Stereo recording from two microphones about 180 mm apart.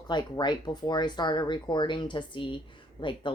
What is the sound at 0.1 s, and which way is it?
A woman's voice, 25° left (ahead or behind).